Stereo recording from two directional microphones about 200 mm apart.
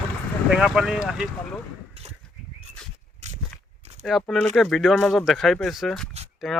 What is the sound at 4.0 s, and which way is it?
Speech, centre (ahead or behind).